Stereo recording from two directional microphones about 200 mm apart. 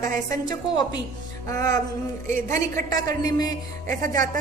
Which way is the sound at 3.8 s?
40° right (ahead or behind).